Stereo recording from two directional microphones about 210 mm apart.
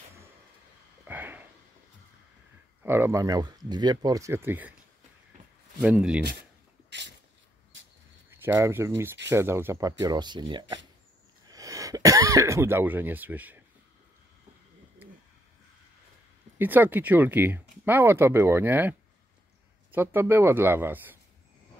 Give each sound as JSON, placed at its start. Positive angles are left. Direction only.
{"t": 1.0, "sound": "a sound", "side_deg": -10}
{"t": 2.8, "sound": "speech", "side_deg": -10}
{"t": 5.8, "sound": "speech", "side_deg": -5}
{"t": 6.9, "sound": "a sound", "side_deg": -55}
{"t": 8.3, "sound": "speech", "side_deg": -10}
{"t": 11.4, "sound": "speech", "side_deg": -15}
{"t": 16.5, "sound": "speech", "side_deg": -10}